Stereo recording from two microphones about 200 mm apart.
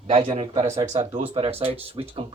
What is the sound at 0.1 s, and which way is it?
Speech, 30° right (ahead or behind).